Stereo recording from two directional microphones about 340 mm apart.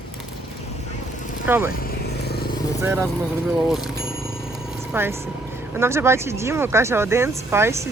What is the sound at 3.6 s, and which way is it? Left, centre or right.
Speech, centre.